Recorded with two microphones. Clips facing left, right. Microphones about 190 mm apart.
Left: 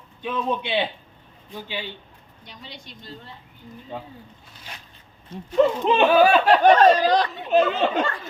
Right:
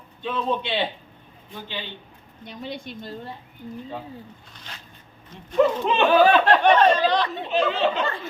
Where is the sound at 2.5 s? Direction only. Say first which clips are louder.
Right 9 dB; 55° right (ahead or behind).